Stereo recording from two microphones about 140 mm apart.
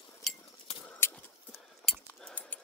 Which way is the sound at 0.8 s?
15° left (ahead or behind).